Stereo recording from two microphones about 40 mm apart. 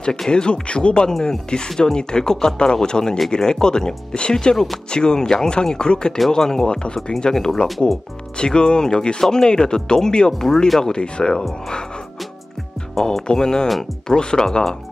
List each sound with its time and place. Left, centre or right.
0.3 s speech: left
13.3 s speech: centre